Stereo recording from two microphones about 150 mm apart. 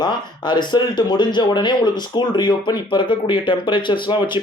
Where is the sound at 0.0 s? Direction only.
30° left (ahead or behind).